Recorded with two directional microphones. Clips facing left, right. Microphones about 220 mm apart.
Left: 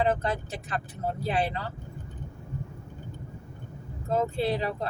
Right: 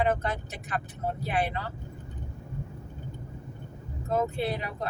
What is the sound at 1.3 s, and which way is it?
Speech, 30° left (ahead or behind).